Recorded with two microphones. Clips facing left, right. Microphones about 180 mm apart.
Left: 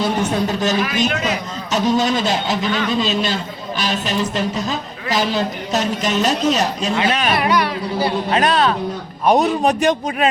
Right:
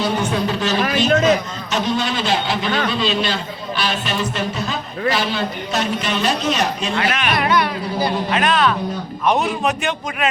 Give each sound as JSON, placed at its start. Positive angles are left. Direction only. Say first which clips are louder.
{"t": 0.0, "sound": "speech", "louder": "left 1 dB", "side_deg": 45}
{"t": 1.0, "sound": "a man's voice", "louder": "right 5 dB", "side_deg": -40}
{"t": 1.7, "sound": "a man's voice", "louder": "left 4 dB", "side_deg": 40}